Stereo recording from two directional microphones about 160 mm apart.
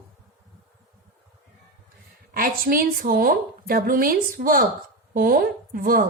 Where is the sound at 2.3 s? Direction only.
65° right (ahead or behind).